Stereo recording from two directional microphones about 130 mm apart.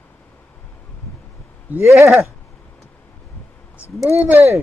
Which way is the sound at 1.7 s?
20° right (ahead or behind).